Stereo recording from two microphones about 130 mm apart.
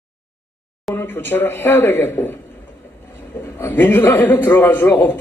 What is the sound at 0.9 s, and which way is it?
A man's voice, 15° left (ahead or behind).